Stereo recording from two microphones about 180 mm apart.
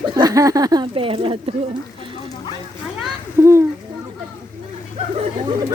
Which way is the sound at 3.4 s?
15° right (ahead or behind).